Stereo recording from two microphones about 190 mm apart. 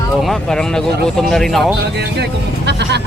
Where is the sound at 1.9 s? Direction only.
65° right (ahead or behind).